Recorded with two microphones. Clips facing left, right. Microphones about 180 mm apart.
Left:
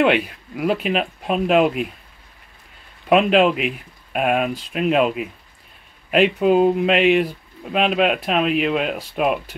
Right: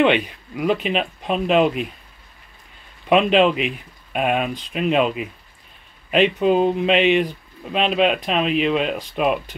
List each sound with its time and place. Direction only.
0.0 s speech: 5° left (ahead or behind)
3.1 s speech: 5° left (ahead or behind)